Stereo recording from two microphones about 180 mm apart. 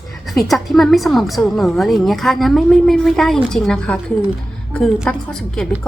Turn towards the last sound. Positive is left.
turn(degrees=5)  # may be behind; listen again after turning